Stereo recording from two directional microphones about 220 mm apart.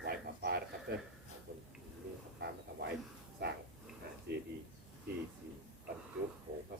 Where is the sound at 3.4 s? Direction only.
45° right (ahead or behind).